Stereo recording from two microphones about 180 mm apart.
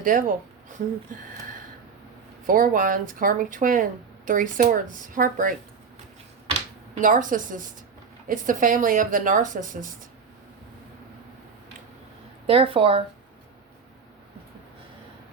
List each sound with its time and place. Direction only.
0.0 s speech: 50° right (ahead or behind)
2.5 s speech: 50° right (ahead or behind)
7.0 s speech: 45° right (ahead or behind)
12.5 s speech: 30° right (ahead or behind)